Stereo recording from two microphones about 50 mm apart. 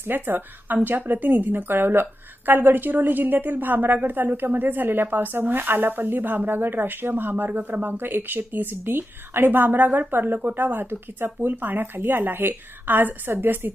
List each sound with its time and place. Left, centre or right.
0.0 s a woman's voice: right